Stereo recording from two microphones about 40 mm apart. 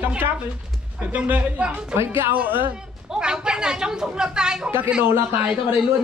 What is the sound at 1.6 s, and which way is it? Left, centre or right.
Speech, right.